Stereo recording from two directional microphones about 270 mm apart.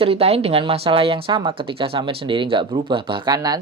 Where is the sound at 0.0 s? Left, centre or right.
Right.